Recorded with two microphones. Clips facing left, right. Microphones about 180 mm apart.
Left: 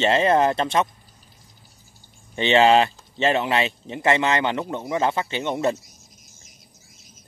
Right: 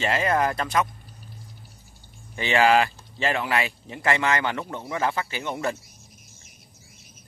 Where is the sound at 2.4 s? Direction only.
25° left (ahead or behind).